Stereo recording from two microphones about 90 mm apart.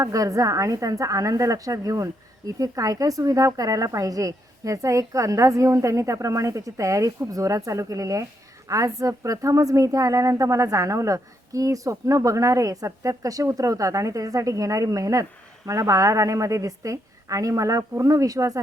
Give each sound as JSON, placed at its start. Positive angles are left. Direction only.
{"t": 0.0, "sound": "a woman's voice", "side_deg": -40}